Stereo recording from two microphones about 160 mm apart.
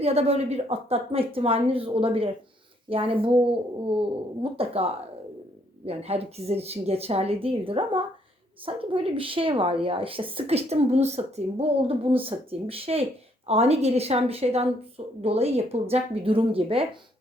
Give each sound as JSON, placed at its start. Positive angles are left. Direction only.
{"t": 0.0, "sound": "a woman's voice", "side_deg": -40}